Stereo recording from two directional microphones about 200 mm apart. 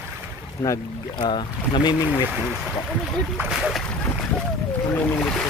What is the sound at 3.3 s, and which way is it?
Speech, 5° right (ahead or behind).